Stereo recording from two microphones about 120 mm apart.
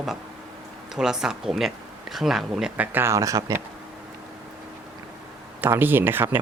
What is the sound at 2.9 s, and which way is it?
Speech, 20° right (ahead or behind).